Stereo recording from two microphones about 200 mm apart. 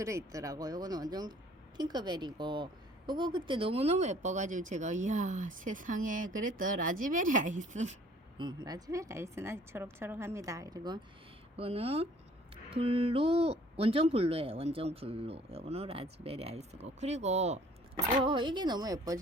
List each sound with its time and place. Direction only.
0.0 s speech: 15° right (ahead or behind); by 7.9 s 35° right (ahead or behind)
8.4 s a woman's voice: 20° right (ahead or behind)